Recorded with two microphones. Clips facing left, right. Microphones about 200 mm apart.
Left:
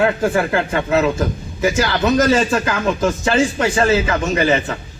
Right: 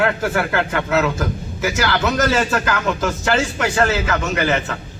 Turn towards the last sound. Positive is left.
turn(degrees=20)  # may be behind; listen again after turning